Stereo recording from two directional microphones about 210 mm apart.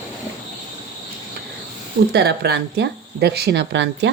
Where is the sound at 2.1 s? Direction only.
50° right (ahead or behind).